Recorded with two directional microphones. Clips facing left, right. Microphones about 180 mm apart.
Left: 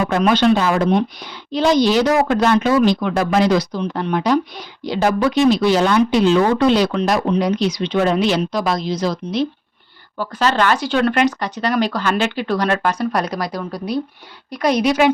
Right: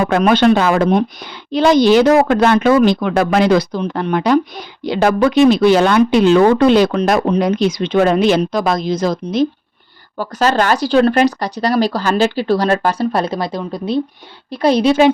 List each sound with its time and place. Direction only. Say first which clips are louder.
0.0 s a woman's voice: right 3 dB; 55° right (ahead or behind); by 15.1 s 30° right (ahead or behind)